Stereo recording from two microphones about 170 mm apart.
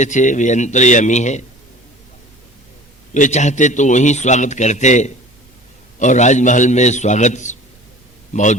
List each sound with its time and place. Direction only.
0.0 s a man's voice: 45° left (ahead or behind)
3.2 s a man's voice: 45° left (ahead or behind)